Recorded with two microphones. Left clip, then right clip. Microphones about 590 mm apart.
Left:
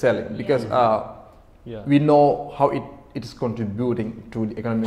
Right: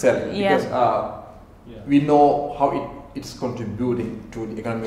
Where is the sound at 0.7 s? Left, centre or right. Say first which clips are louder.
Left 1 dB; left.